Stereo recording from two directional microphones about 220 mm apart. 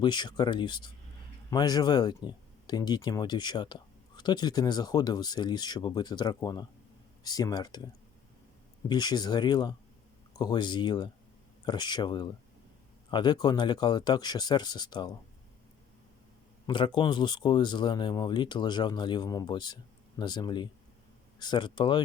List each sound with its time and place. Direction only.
0.0 s speech: 20° left (ahead or behind)
8.9 s speech: 20° left (ahead or behind)
16.6 s speech: 20° left (ahead or behind)